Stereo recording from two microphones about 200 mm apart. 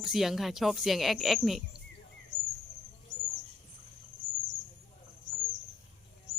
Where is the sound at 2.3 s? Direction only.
20° left (ahead or behind).